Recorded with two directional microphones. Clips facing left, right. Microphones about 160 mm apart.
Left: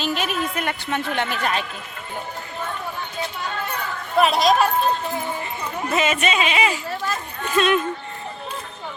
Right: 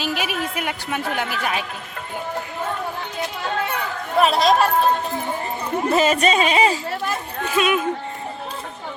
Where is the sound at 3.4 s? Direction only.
75° right (ahead or behind).